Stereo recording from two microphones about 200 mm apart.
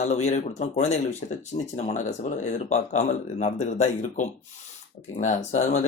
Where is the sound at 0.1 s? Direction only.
35° left (ahead or behind).